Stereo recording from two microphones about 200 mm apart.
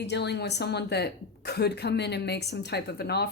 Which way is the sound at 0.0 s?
55° left (ahead or behind).